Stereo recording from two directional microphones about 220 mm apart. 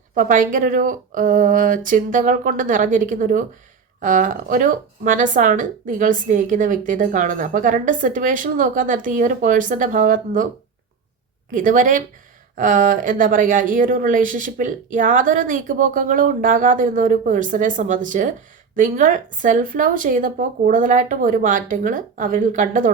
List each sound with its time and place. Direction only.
0.1 s speech: 35° right (ahead or behind)
11.5 s speech: 35° right (ahead or behind)